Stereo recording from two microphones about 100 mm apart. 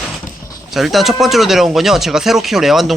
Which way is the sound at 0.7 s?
Centre (ahead or behind).